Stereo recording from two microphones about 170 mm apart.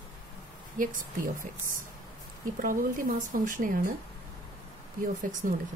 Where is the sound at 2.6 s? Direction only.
55° right (ahead or behind).